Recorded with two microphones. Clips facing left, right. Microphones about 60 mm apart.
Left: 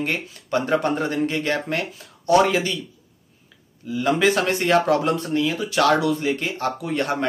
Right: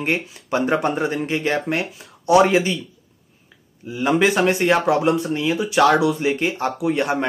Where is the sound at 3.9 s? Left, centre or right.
Centre.